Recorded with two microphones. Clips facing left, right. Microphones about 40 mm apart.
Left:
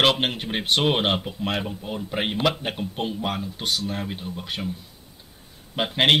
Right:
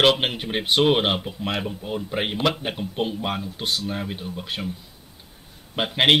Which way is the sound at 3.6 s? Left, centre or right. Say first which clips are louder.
Even; right.